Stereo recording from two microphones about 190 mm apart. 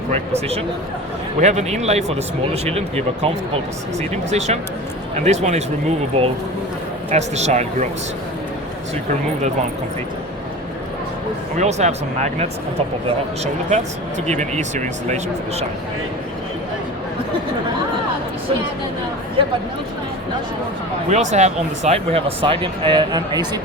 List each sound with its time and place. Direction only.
0.1 s speech: 35° right (ahead or behind)
4.1 s speech: 35° right (ahead or behind)
11.5 s speech: 35° right (ahead or behind)
21.1 s speech: 40° right (ahead or behind); by 23.6 s 20° right (ahead or behind)